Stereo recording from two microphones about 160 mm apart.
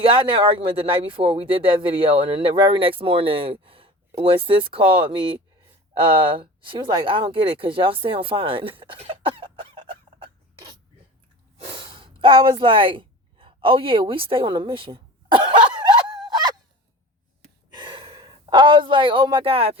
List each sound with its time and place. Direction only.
0.0 s speech: 35° right (ahead or behind)
11.6 s a sound: 35° right (ahead or behind)
17.7 s speech: 30° right (ahead or behind)